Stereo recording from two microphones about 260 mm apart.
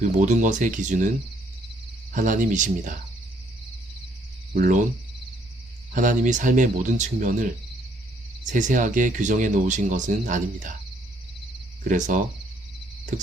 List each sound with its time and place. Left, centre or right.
0.0 s speech: right
2.1 s speech: right
4.5 s speech: right
5.9 s speech: right
11.8 s speech: right